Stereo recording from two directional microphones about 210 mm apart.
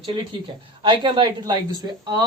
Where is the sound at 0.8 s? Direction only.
25° right (ahead or behind).